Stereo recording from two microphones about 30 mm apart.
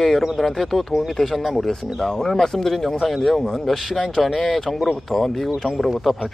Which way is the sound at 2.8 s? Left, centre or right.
Centre.